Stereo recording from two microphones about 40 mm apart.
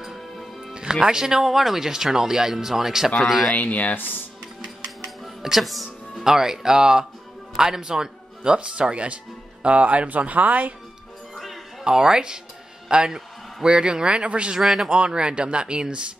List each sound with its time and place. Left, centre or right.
1.0 s speech: centre
3.5 s speech: left
5.0 s music: centre
6.2 s speech: centre
8.5 s speech: right
11.8 s a man's voice: centre
14.5 s speech: centre
14.9 s speech: right